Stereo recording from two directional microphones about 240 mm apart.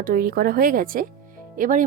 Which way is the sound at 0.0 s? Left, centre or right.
Right.